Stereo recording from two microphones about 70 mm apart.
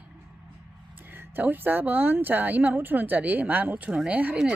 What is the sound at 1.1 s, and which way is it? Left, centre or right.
Speech, right.